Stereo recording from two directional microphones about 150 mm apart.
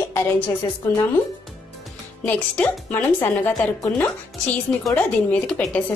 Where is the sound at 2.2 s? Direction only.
10° left (ahead or behind).